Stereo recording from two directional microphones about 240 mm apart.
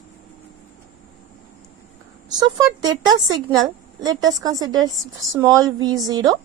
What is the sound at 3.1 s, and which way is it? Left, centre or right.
A woman's voice, centre.